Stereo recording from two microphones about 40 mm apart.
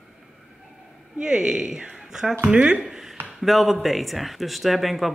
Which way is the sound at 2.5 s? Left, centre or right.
Right.